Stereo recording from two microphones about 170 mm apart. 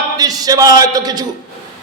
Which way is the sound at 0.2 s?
20° right (ahead or behind).